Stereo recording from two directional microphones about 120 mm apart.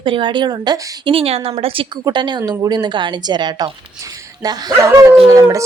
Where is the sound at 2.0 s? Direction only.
40° right (ahead or behind).